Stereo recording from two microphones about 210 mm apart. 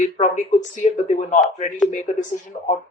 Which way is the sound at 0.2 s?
35° left (ahead or behind).